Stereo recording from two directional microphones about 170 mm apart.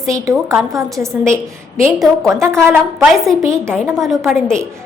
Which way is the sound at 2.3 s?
15° right (ahead or behind).